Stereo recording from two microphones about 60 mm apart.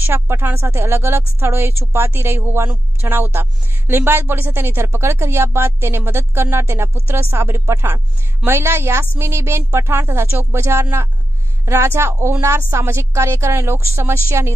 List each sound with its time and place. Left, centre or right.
0.0 s a woman's voice: right